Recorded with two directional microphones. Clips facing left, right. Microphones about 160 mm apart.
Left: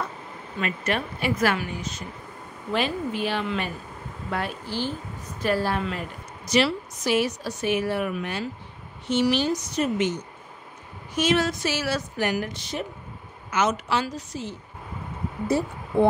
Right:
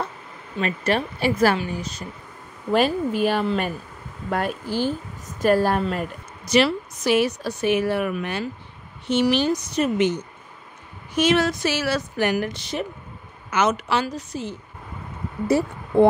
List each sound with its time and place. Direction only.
0.6 s a woman's voice: 35° right (ahead or behind)
6.5 s a woman's voice: 60° right (ahead or behind)
11.1 s a woman's voice: 65° right (ahead or behind)
15.4 s speech: 80° right